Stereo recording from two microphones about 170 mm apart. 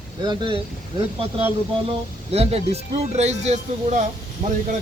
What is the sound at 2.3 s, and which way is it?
Speech, 35° right (ahead or behind).